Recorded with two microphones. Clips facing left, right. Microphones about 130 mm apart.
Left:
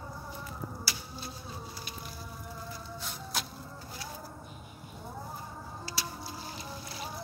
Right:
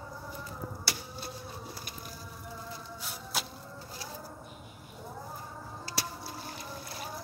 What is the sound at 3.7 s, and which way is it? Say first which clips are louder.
Livestock: even; 35° right (ahead or behind).